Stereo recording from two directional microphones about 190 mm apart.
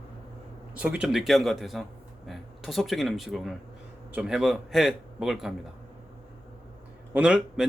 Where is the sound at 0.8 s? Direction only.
5° right (ahead or behind).